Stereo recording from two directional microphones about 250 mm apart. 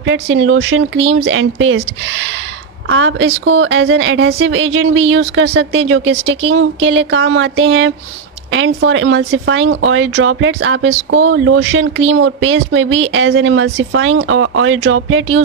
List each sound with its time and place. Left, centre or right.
0.0 s speech: right